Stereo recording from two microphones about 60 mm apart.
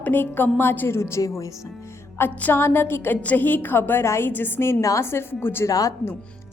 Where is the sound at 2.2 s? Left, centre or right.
Left.